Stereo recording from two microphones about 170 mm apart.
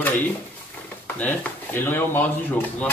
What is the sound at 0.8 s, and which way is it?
Speech, 10° left (ahead or behind).